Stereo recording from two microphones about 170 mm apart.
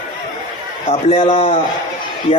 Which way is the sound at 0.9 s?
35° left (ahead or behind).